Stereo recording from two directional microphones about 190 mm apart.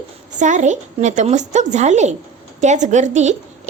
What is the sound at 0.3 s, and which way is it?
A woman's voice, 40° right (ahead or behind).